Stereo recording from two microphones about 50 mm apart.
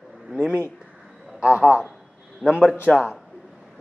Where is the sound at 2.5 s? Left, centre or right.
Right.